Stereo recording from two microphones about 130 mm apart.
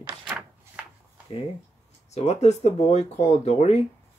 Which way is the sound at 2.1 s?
55° left (ahead or behind).